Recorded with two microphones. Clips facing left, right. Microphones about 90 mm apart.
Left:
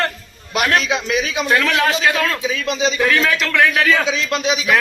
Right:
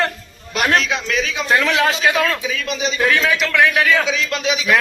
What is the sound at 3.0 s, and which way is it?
Speech, 5° right (ahead or behind).